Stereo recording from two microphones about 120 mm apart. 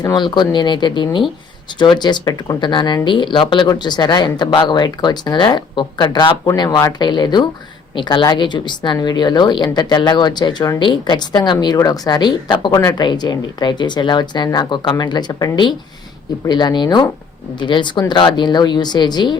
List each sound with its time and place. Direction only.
0.0 s speech: 35° left (ahead or behind)